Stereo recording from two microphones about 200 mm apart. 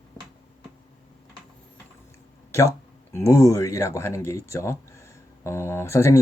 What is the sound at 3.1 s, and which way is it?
Speech, 15° left (ahead or behind).